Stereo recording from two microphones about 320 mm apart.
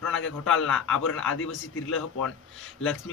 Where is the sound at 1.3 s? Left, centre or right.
Left.